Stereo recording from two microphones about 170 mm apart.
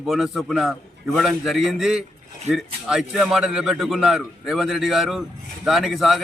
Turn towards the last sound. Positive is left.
turn(degrees=0)  # may be behind; listen again after turning